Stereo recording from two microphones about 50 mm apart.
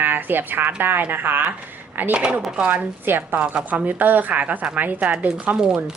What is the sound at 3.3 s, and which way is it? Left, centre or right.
Speech, centre.